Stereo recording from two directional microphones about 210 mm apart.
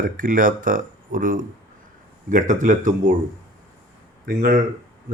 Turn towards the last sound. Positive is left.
turn(degrees=-40)  # may be behind; listen again after turning